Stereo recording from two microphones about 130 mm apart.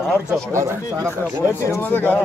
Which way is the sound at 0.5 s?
25° right (ahead or behind).